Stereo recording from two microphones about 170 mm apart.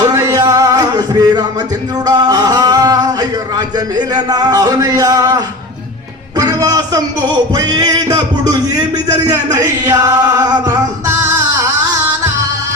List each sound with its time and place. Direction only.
0.0 s music: 20° right (ahead or behind)
2.0 s speech: 25° right (ahead or behind)
10.7 s music: 15° right (ahead or behind)